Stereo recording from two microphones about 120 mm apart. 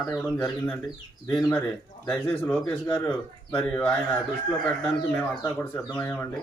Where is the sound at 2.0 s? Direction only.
10° left (ahead or behind).